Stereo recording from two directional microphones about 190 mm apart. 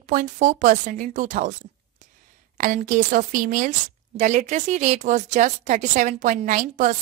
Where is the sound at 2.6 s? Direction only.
45° right (ahead or behind).